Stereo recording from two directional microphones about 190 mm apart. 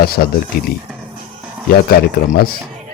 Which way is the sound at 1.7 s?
50° left (ahead or behind).